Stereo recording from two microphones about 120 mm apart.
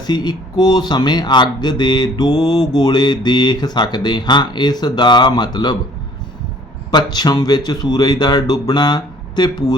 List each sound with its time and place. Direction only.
0.0 s speech: 35° left (ahead or behind)
6.9 s speech: 35° left (ahead or behind)